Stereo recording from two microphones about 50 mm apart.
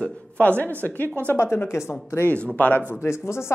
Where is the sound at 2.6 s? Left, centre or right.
Left.